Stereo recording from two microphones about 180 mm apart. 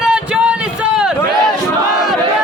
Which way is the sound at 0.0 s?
5° right (ahead or behind).